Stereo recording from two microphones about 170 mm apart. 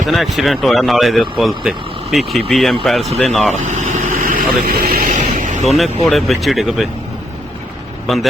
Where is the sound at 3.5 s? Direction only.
45° right (ahead or behind).